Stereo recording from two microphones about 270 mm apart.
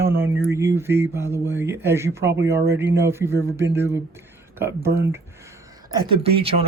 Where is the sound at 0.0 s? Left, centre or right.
Centre.